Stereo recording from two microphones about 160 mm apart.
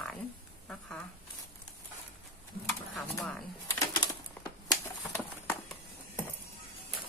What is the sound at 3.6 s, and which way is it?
Bird, 20° left (ahead or behind).